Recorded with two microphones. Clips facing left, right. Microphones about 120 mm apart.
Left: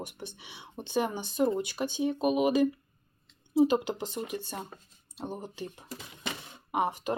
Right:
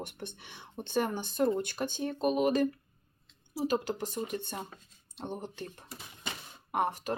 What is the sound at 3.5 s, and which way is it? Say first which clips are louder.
Speech: left 6 dB; 20° left (ahead or behind).